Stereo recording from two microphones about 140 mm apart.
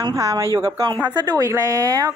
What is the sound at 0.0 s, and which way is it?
Speech, 25° right (ahead or behind).